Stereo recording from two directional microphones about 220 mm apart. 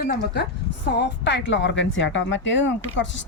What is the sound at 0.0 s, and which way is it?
Speech, 40° left (ahead or behind).